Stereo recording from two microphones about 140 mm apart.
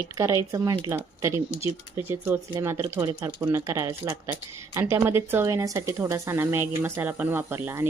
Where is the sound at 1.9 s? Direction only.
15° right (ahead or behind).